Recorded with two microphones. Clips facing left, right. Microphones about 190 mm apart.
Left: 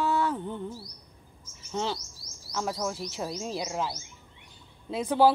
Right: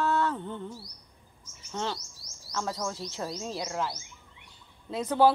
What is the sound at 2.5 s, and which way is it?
Speech, 10° left (ahead or behind).